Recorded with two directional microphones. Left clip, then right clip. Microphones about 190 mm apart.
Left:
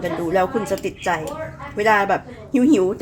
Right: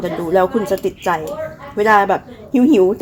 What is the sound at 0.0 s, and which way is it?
A woman's voice, 20° right (ahead or behind).